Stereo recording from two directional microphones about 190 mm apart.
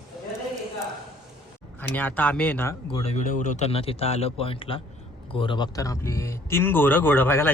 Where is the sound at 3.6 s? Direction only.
30° left (ahead or behind).